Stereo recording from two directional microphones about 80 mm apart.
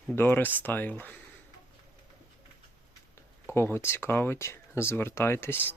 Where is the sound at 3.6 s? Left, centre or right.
Left.